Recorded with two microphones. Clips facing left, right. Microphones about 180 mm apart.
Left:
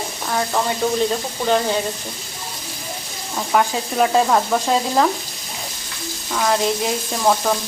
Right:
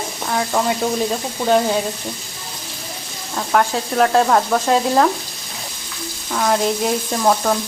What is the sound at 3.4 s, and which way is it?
Sizzle, 5° left (ahead or behind).